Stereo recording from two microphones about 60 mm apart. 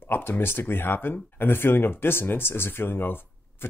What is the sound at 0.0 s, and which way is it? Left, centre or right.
Speech, left.